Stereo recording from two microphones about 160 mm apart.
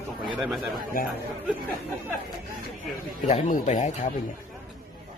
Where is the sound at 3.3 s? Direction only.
50° left (ahead or behind).